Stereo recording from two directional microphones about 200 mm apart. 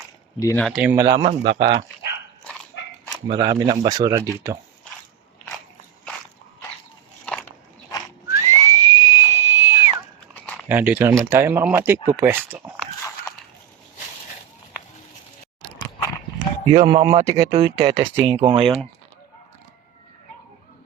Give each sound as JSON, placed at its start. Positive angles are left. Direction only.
{"t": 0.3, "sound": "speech", "side_deg": 15}
{"t": 0.6, "sound": "speech", "side_deg": -5}
{"t": 3.2, "sound": "speech", "side_deg": -20}
{"t": 8.3, "sound": "whistle", "side_deg": -15}
{"t": 10.4, "sound": "a sound", "side_deg": 5}
{"t": 10.7, "sound": "speech", "side_deg": -10}
{"t": 16.6, "sound": "speech", "side_deg": -20}
{"t": 17.9, "sound": "speech", "side_deg": -30}